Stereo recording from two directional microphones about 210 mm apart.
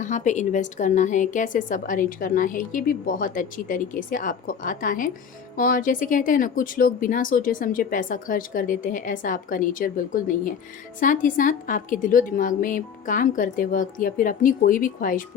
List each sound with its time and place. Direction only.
0.0 s a woman's voice: 35° left (ahead or behind)